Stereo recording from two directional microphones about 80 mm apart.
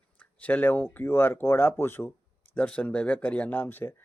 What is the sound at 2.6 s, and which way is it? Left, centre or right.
Speech, centre.